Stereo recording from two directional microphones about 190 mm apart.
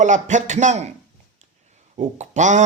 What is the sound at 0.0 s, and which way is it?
Speech, 40° right (ahead or behind).